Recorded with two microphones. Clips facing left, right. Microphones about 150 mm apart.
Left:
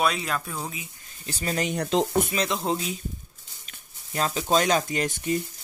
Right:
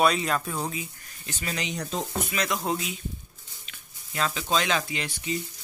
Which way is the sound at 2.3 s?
25° left (ahead or behind).